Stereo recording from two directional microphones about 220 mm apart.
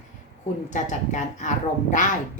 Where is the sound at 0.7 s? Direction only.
35° left (ahead or behind).